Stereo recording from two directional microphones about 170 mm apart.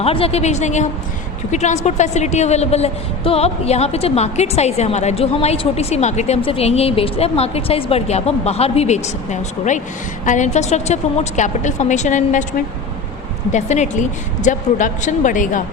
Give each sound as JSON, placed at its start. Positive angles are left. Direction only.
{"t": 0.0, "sound": "a woman's voice", "side_deg": 35}